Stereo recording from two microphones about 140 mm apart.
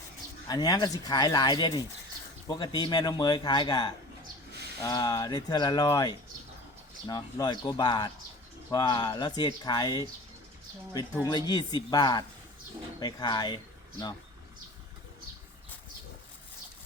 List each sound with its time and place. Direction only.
0.4 s a man's voice: 25° left (ahead or behind)
11.3 s speech: 30° left (ahead or behind)